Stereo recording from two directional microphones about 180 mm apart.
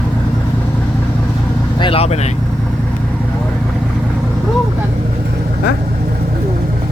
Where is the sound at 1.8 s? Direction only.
30° left (ahead or behind).